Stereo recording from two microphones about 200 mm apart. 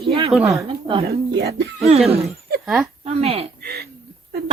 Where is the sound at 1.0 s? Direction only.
55° right (ahead or behind).